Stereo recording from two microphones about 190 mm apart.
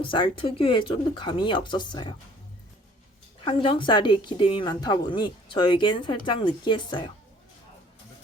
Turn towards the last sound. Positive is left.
turn(degrees=25)  # may be behind; listen again after turning